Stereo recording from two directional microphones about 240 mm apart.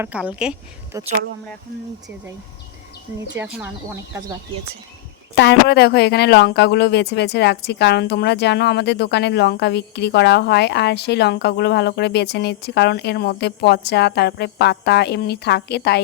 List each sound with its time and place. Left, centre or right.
0.0 s a woman's voice: centre
3.3 s speech: centre
5.3 s speech: left